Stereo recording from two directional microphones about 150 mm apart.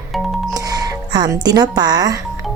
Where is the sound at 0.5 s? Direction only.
25° right (ahead or behind).